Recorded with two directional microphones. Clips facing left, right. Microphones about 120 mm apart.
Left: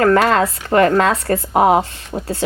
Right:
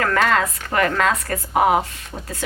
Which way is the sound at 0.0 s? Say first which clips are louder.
Left 6 dB; 30° left (ahead or behind).